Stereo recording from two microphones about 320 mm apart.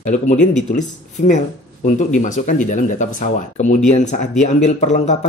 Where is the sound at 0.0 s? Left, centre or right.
Left.